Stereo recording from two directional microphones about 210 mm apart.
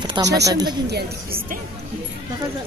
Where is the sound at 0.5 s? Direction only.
20° right (ahead or behind).